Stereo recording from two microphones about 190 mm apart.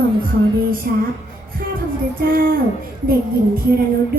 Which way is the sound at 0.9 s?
55° right (ahead or behind).